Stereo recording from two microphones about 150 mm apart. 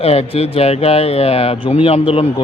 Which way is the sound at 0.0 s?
45° left (ahead or behind).